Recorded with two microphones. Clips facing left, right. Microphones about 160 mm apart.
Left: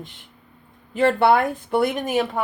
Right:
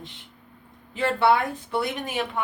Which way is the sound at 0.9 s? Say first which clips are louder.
Left 4 dB; 50° left (ahead or behind).